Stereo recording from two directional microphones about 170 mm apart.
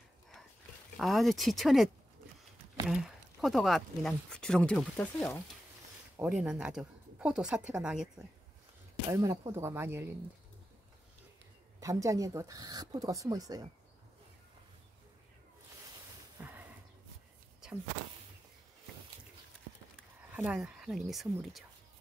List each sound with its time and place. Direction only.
0.9 s speech: centre (ahead or behind)
2.9 s speech: centre (ahead or behind)
6.1 s speech: 5° right (ahead or behind)
9.1 s speech: 20° right (ahead or behind)
11.8 s speech: 20° right (ahead or behind)
16.3 s horse: 10° right (ahead or behind)
20.3 s speech: 5° right (ahead or behind)